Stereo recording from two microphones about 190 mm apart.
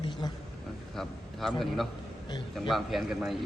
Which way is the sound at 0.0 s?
25° left (ahead or behind).